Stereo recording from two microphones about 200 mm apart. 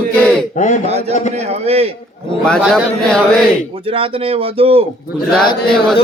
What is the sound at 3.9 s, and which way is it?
Speech, 25° right (ahead or behind).